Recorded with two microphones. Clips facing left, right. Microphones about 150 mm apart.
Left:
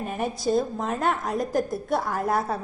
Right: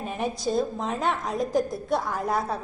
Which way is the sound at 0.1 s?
Centre (ahead or behind).